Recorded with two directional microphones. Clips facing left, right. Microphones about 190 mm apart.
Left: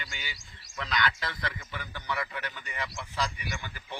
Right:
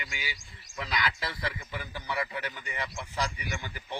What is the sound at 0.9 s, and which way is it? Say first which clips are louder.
Speech: left 2 dB; 25° right (ahead or behind).